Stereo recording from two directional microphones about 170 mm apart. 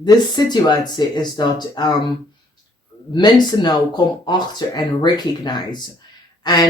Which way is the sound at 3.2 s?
25° left (ahead or behind).